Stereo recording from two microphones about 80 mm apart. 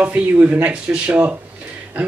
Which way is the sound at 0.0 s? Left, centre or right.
Centre.